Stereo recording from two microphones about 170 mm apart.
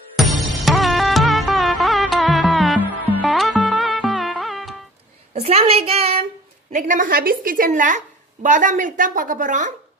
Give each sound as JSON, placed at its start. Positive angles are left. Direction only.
{"t": 0.4, "sound": "music", "side_deg": 0}
{"t": 5.3, "sound": "a child's voice", "side_deg": -40}
{"t": 6.7, "sound": "a woman's voice", "side_deg": -50}